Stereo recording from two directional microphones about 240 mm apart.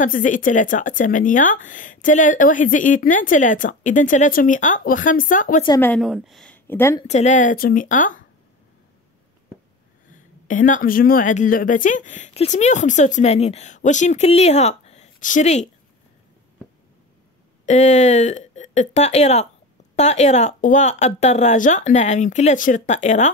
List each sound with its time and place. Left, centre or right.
0.0 s speech: left
5.7 s a woman's voice: centre
7.1 s speech: left
10.1 s speech: left
17.6 s speech: left